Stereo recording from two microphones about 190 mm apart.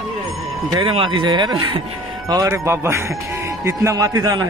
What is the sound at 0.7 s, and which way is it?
Speech, 25° right (ahead or behind).